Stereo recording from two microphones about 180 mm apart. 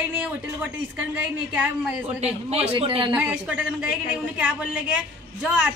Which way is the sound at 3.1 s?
5° right (ahead or behind).